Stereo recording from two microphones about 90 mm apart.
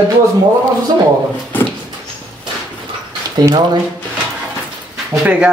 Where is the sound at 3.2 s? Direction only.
45° right (ahead or behind).